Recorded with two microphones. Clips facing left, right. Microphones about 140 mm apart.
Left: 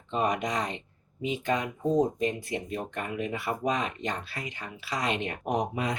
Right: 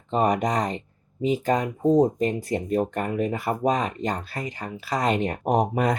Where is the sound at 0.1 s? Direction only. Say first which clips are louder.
Right 6 dB; 40° right (ahead or behind).